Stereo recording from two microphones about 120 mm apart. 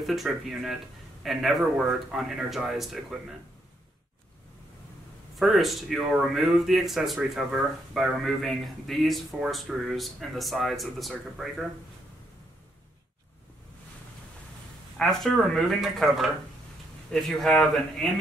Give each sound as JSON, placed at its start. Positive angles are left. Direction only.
{"t": 0.0, "sound": "speech", "side_deg": 0}
{"t": 5.3, "sound": "speech", "side_deg": 0}
{"t": 15.0, "sound": "speech", "side_deg": 0}